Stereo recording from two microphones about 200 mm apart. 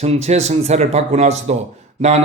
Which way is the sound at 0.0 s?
30° right (ahead or behind).